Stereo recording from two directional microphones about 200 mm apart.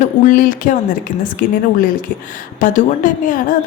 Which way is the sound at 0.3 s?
40° left (ahead or behind).